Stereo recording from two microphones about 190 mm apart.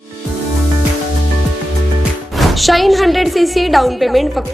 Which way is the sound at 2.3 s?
Centre (ahead or behind).